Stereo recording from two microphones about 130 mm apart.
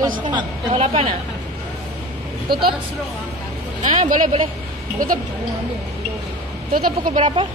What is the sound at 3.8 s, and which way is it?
Speech, 70° right (ahead or behind).